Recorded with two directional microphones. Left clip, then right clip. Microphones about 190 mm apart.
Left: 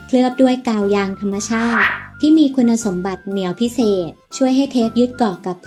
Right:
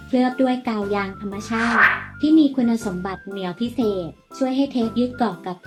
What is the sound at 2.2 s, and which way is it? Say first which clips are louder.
Speech: left 4 dB; 50° left (ahead or behind).